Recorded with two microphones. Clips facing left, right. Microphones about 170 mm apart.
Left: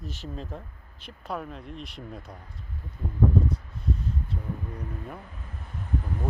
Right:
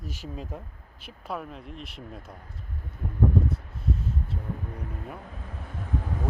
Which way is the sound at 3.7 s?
5° right (ahead or behind).